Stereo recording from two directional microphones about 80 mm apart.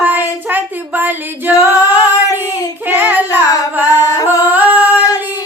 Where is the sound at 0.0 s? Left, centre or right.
Right.